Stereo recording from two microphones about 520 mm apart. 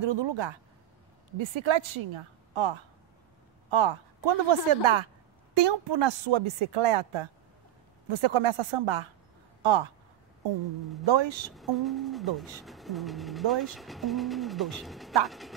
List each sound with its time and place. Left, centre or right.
0.0 s speech: right
11.1 s speech: right
11.5 s speech: centre